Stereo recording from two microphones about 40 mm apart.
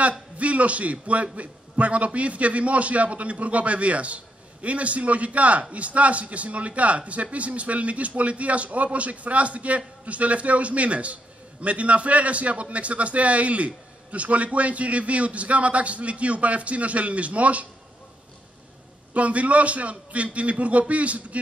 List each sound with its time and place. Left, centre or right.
0.4 s a man's voice: right
19.1 s a man's voice: right